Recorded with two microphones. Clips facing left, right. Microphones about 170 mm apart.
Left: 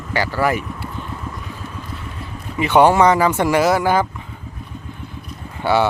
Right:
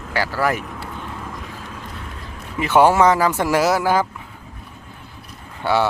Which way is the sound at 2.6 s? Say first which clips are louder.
Left 1 dB; 5° right (ahead or behind).